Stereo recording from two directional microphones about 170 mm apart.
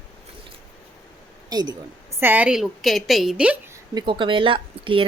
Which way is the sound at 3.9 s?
30° right (ahead or behind).